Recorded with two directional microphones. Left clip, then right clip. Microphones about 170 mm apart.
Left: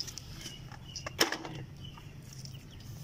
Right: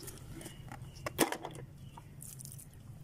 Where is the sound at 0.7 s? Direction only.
40° right (ahead or behind).